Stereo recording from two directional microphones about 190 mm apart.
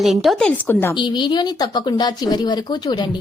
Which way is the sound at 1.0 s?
25° left (ahead or behind).